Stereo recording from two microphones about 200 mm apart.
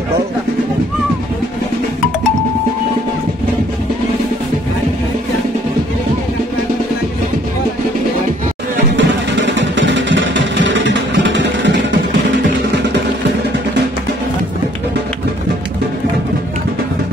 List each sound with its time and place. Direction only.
8.9 s music: 65° right (ahead or behind)